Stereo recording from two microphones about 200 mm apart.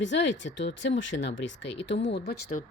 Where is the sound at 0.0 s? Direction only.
65° left (ahead or behind).